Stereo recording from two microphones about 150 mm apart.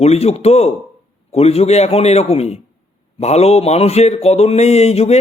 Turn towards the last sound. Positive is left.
turn(degrees=45)  # may be behind; listen again after turning